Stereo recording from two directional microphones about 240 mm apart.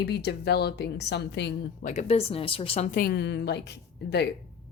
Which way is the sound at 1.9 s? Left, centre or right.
Left.